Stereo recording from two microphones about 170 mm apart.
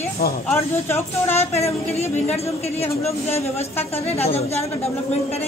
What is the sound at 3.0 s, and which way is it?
A woman's voice, 40° left (ahead or behind).